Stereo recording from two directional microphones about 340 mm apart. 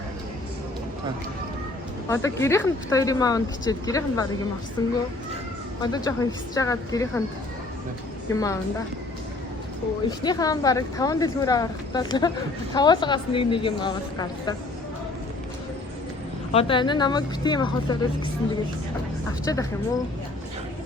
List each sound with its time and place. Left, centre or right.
2.0 s speech: centre
8.3 s speech: centre
10.2 s speech: centre
16.5 s speech: centre
19.5 s speech: centre